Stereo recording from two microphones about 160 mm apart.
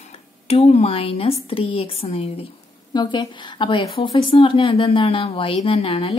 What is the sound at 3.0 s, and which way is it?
A woman's voice, 30° left (ahead or behind).